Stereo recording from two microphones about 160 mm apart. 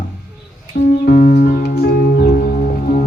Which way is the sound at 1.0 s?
75° left (ahead or behind).